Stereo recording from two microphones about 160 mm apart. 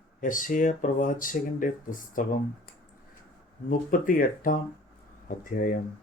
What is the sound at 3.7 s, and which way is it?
Mantra, 60° left (ahead or behind).